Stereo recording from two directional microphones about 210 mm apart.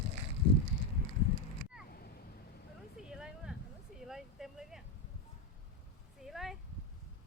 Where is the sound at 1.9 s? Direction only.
45° left (ahead or behind).